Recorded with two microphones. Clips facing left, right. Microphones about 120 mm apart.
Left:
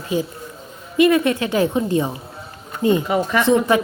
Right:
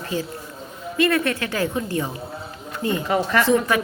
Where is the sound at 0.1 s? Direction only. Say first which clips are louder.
Left 6 dB; 15° left (ahead or behind).